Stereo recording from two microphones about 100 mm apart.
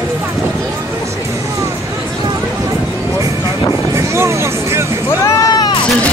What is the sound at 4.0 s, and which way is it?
Vehicle, 30° right (ahead or behind).